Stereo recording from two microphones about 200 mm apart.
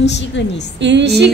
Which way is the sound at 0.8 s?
60° right (ahead or behind).